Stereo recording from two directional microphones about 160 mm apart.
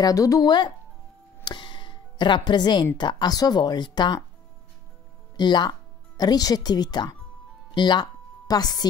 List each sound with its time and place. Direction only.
0.0 s speech: 20° left (ahead or behind)
1.4 s music: 30° left (ahead or behind)
3.0 s speech: 25° left (ahead or behind)
5.4 s speech: 30° left (ahead or behind)
7.7 s music: 30° left (ahead or behind)